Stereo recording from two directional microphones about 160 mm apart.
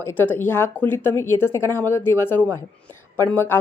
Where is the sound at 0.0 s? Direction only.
15° left (ahead or behind).